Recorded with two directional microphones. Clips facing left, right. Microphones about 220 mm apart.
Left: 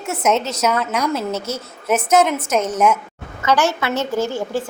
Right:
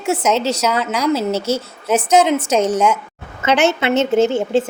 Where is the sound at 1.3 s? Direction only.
30° right (ahead or behind).